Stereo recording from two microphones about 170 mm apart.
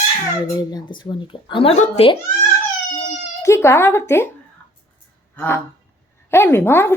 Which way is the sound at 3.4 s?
15° left (ahead or behind).